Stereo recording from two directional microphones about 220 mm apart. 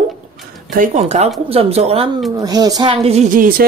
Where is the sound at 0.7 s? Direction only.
30° right (ahead or behind).